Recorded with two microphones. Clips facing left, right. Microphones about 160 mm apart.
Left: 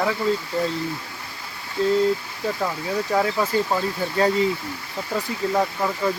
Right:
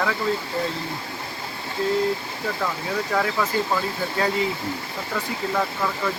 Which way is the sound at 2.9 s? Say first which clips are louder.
Left 3 dB; 25° left (ahead or behind).